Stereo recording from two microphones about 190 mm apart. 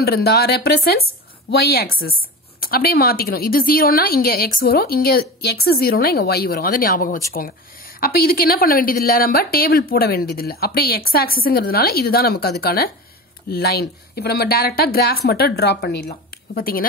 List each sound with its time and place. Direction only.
0.0 s a woman's voice: 55° left (ahead or behind)